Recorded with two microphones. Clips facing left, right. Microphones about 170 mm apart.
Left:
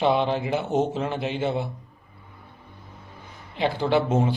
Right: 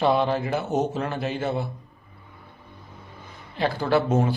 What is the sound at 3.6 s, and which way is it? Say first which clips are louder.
Speech: even; 20° left (ahead or behind).